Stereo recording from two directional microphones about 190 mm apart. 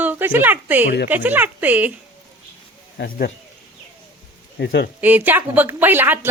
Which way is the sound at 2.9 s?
55° left (ahead or behind).